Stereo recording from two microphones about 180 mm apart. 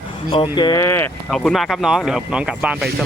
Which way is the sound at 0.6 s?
20° left (ahead or behind).